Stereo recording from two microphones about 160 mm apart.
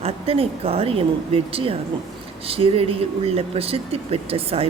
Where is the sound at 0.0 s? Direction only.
40° right (ahead or behind).